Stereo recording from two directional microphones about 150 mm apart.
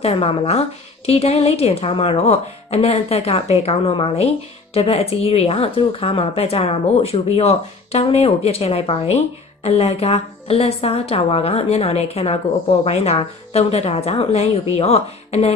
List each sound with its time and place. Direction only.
0.0 s a woman's voice: 40° left (ahead or behind)